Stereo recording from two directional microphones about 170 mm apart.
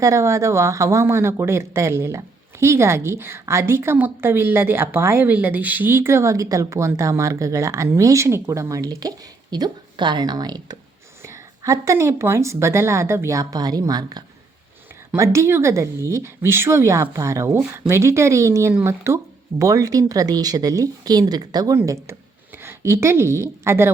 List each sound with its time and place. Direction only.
0.0 s a woman's voice: 15° right (ahead or behind)